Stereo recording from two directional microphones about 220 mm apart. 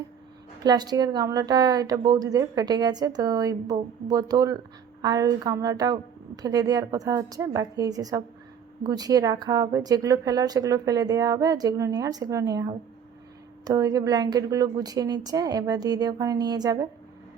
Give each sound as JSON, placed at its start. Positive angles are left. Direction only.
{"t": 0.6, "sound": "a woman's voice", "side_deg": -20}